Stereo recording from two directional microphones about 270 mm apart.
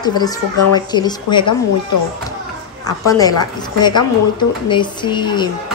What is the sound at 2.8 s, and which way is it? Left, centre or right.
A woman's voice, centre.